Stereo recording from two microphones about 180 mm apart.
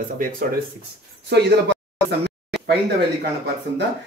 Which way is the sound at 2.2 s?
65° right (ahead or behind).